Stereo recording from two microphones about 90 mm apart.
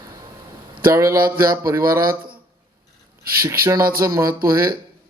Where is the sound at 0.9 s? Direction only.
35° right (ahead or behind).